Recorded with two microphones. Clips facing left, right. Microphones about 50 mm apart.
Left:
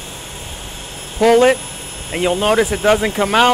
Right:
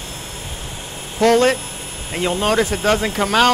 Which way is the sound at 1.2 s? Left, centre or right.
Centre.